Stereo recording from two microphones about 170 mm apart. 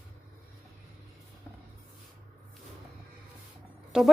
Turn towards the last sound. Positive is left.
turn(degrees=-5)  # may be behind; listen again after turning